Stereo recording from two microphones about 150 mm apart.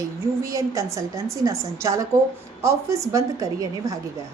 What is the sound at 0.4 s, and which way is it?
A woman's voice, 20° right (ahead or behind).